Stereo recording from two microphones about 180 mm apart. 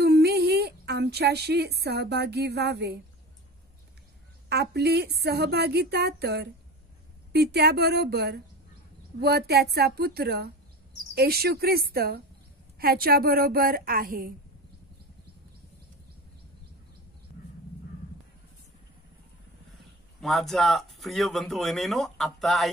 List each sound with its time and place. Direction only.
0.0 s speech: 65° right (ahead or behind)
4.5 s speech: 65° right (ahead or behind)
20.2 s speech: centre (ahead or behind)